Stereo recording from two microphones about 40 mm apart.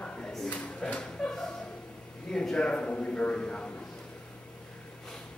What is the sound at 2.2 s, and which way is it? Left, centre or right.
A man's voice, centre.